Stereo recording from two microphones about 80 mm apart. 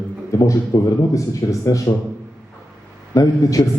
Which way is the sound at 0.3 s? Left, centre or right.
Left.